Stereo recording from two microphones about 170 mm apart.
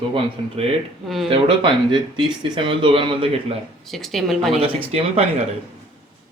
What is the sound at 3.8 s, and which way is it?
Speech, centre (ahead or behind).